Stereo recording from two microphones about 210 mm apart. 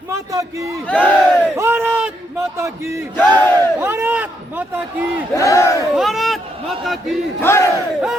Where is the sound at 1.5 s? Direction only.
10° right (ahead or behind).